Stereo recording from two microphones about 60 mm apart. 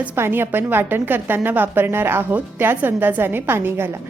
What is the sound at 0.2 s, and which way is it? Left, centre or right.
A woman's voice, right.